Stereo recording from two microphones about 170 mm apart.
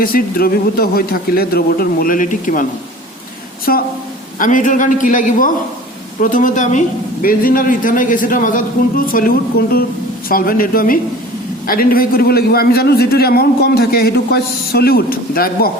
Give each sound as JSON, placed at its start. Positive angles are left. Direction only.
{"t": 0.0, "sound": "a man's voice", "side_deg": 60}
{"t": 3.7, "sound": "a man's voice", "side_deg": 60}
{"t": 4.4, "sound": "a man's voice", "side_deg": 50}